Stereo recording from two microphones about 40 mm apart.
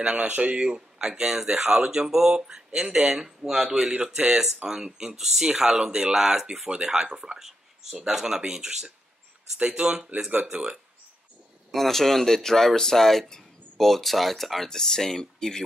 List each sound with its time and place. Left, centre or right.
0.0 s speech: right
0.3 s speech: right
0.7 s speech: centre
3.9 s speech: right
11.7 s speech: centre